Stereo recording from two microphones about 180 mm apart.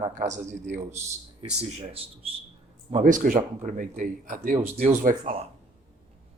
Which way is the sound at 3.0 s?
50° right (ahead or behind).